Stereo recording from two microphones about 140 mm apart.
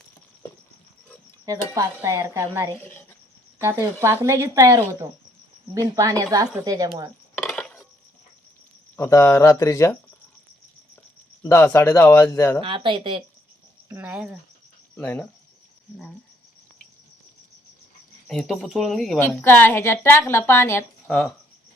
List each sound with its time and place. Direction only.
1.5 s speech: 25° right (ahead or behind)
2.8 s speech: 15° left (ahead or behind)
3.6 s speech: 20° right (ahead or behind)
7.3 s a sound: 5° left (ahead or behind)
9.0 s speech: 20° left (ahead or behind)
11.4 s a woman's voice: 20° left (ahead or behind)
12.6 s speech: 40° right (ahead or behind)
13.8 s speech: 15° right (ahead or behind)
14.9 s a woman's voice: 10° left (ahead or behind)
18.3 s speech: centre (ahead or behind)
19.4 s a woman's voice: 15° left (ahead or behind)